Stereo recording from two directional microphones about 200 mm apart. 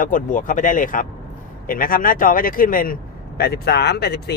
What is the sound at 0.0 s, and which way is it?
Speech, 40° left (ahead or behind).